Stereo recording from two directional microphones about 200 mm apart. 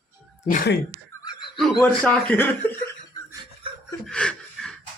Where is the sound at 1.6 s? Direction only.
5° left (ahead or behind).